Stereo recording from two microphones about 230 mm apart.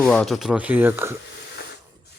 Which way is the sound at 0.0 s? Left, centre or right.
Centre.